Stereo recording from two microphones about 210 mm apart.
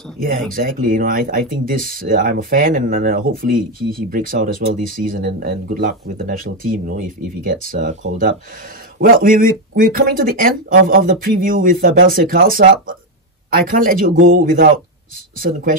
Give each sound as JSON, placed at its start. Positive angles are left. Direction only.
{"t": 0.2, "sound": "speech", "side_deg": -40}
{"t": 9.0, "sound": "speech", "side_deg": -45}